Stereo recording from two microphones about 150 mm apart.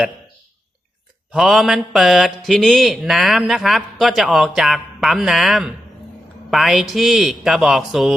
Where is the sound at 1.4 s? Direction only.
Centre (ahead or behind).